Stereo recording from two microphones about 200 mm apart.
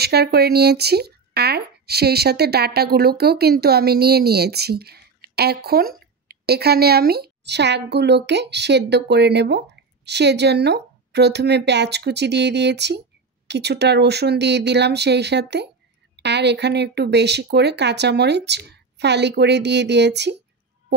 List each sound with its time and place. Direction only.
0.0 s a woman's voice: 55° right (ahead or behind)